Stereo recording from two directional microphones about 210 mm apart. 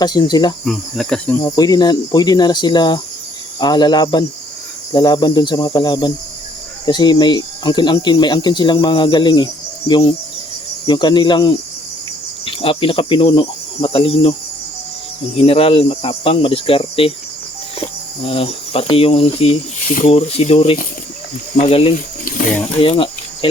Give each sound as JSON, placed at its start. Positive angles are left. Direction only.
{"t": 0.0, "sound": "speech", "side_deg": 20}
{"t": 0.6, "sound": "cricket", "side_deg": 0}
{"t": 1.4, "sound": "speech", "side_deg": 20}
{"t": 15.4, "sound": "speech", "side_deg": 25}
{"t": 18.2, "sound": "speech", "side_deg": 25}
{"t": 22.8, "sound": "cricket", "side_deg": 25}